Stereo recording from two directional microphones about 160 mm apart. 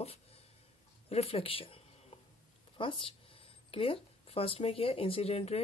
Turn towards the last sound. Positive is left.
turn(degrees=40)  # may be behind; listen again after turning